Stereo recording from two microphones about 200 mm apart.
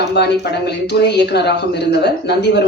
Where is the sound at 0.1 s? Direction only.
55° left (ahead or behind).